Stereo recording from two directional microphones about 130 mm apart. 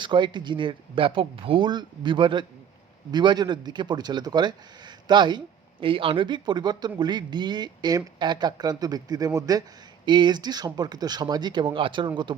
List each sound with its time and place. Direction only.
0.0 s speech: 35° right (ahead or behind)